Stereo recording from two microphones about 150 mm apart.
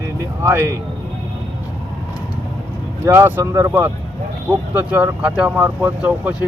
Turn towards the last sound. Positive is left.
turn(degrees=-10)  # may be behind; listen again after turning